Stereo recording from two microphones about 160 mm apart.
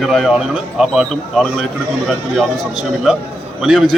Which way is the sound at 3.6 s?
Centre (ahead or behind).